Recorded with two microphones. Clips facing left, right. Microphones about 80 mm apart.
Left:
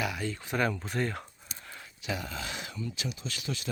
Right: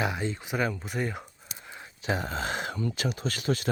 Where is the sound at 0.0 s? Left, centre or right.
Right.